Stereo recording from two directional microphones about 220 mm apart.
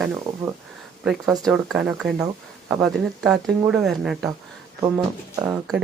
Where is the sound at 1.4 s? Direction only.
Centre (ahead or behind).